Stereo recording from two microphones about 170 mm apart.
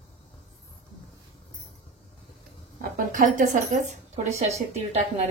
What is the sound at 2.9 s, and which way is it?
A woman's voice, 50° right (ahead or behind).